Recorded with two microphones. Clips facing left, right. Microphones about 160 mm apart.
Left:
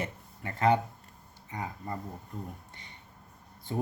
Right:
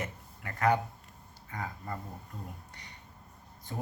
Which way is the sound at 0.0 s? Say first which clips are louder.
Left 3 dB; 25° left (ahead or behind).